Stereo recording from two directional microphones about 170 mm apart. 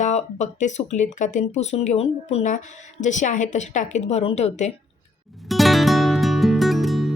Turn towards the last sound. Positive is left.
turn(degrees=0)  # may be behind; listen again after turning